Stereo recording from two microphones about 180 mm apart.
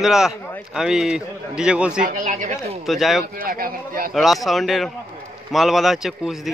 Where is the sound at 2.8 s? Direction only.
Centre (ahead or behind).